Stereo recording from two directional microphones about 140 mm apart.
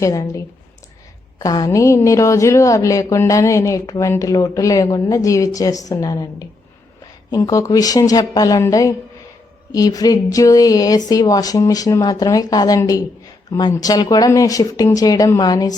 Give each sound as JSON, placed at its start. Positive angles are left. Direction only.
{"t": 0.0, "sound": "speech", "side_deg": 25}
{"t": 7.3, "sound": "speech", "side_deg": 30}